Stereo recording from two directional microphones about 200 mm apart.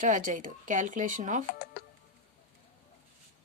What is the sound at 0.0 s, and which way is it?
A woman's voice, 40° right (ahead or behind).